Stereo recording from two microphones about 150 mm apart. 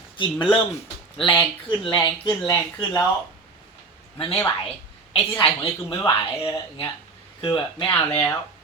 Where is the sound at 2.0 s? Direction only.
20° left (ahead or behind).